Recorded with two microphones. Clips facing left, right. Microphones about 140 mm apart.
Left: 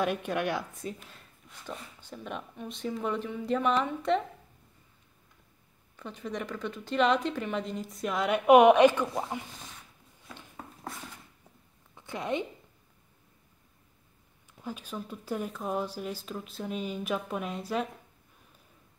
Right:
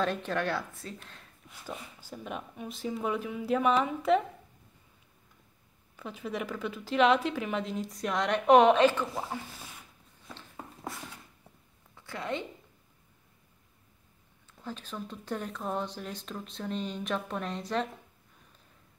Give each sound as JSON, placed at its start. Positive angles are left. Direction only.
{"t": 0.0, "sound": "speech", "side_deg": 10}
{"t": 0.9, "sound": "speech", "side_deg": 5}
{"t": 5.9, "sound": "speech", "side_deg": -5}
{"t": 11.9, "sound": "a sound", "side_deg": 20}
{"t": 14.5, "sound": "speech", "side_deg": 10}